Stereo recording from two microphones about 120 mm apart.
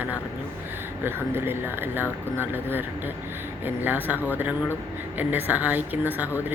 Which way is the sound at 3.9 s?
15° right (ahead or behind).